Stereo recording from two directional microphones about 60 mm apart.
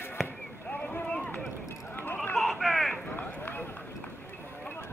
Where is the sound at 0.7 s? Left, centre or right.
Left.